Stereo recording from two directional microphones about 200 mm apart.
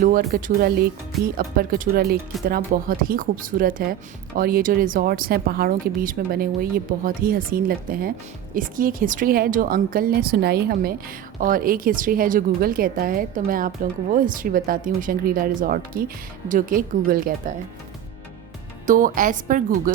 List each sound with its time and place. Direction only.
0.0 s a woman's voice: 40° right (ahead or behind)
18.9 s speech: 40° right (ahead or behind)